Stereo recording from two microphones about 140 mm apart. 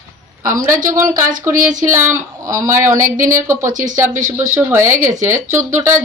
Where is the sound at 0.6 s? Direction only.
70° right (ahead or behind).